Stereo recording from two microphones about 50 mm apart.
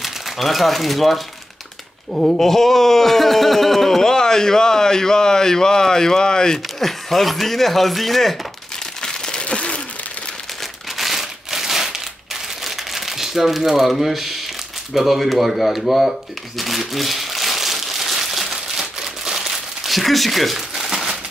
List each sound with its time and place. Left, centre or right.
0.0 s speech: centre
9.0 s crumpling: centre
11.0 s crumpling: centre
15.0 s a sound: centre
20.7 s crumpling: centre